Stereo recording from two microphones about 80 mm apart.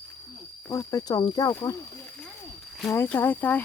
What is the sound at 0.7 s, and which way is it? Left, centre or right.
Speech, left.